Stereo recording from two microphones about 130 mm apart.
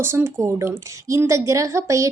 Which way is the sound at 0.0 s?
20° right (ahead or behind).